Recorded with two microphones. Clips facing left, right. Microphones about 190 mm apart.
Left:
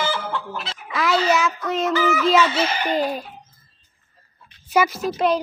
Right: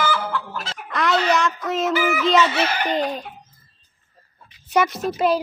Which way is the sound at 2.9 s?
5° left (ahead or behind).